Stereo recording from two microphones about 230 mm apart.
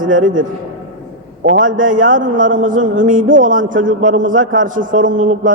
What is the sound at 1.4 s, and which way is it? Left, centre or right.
Speech, right.